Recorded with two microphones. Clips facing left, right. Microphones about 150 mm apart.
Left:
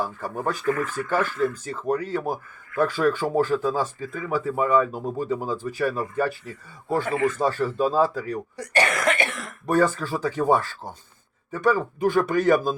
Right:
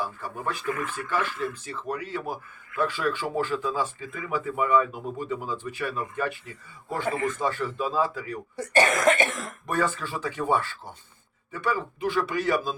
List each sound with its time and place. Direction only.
0.0 s speech: 40° left (ahead or behind)
0.6 s speech: 15° right (ahead or behind)
1.1 s speech: 40° left (ahead or behind)
8.5 s speech: 15° left (ahead or behind)
8.9 s cough: 40° right (ahead or behind)
9.6 s speech: 40° left (ahead or behind)